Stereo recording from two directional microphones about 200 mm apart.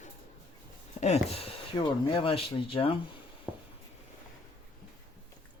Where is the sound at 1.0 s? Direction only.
30° left (ahead or behind).